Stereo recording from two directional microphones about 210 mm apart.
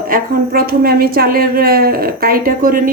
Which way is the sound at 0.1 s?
45° right (ahead or behind).